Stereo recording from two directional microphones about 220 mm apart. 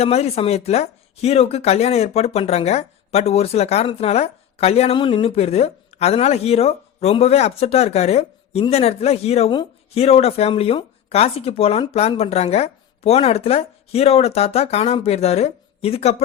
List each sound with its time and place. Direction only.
0.0 s speech: 30° left (ahead or behind)